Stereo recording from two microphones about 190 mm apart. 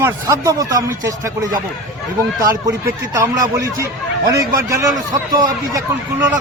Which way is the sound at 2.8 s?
15° right (ahead or behind).